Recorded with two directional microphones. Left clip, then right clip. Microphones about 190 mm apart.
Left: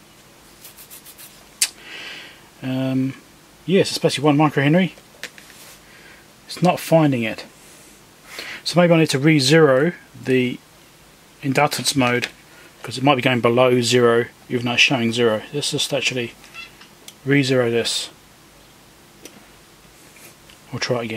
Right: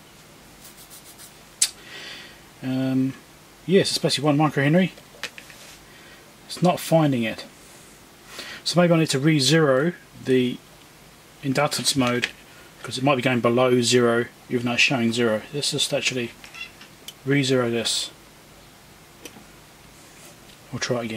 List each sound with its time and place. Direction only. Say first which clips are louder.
2.6 s speech: left 2 dB; 15° left (ahead or behind)
6.5 s speech: left 4 dB; 15° left (ahead or behind)
17.3 s speech: left 4 dB; 20° left (ahead or behind)
20.7 s speech: left 3 dB; 15° left (ahead or behind)